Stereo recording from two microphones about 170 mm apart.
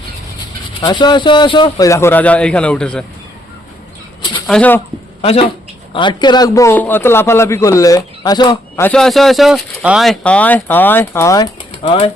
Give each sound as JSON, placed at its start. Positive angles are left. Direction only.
{"t": 0.8, "sound": "speech", "side_deg": 25}
{"t": 4.4, "sound": "speech", "side_deg": 5}
{"t": 5.2, "sound": "a man's voice", "side_deg": 35}
{"t": 8.8, "sound": "speech", "side_deg": 5}
{"t": 11.8, "sound": "speech", "side_deg": 35}